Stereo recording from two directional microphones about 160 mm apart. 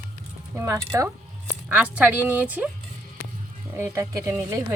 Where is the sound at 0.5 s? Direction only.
15° right (ahead or behind).